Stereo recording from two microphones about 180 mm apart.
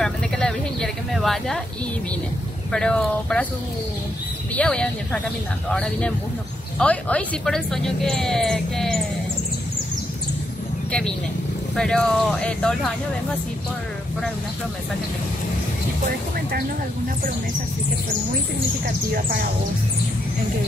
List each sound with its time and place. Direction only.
0.0 s a sound: 5° left (ahead or behind)
2.7 s a woman's voice: 5° left (ahead or behind)
4.6 s a woman's voice: 5° left (ahead or behind)
10.9 s a woman's voice: 5° left (ahead or behind)
16.1 s speech: 55° right (ahead or behind)